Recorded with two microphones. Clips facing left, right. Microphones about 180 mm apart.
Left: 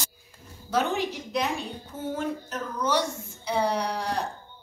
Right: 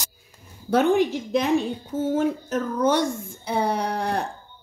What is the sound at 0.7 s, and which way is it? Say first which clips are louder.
A woman's voice: right 7 dB; 50° right (ahead or behind).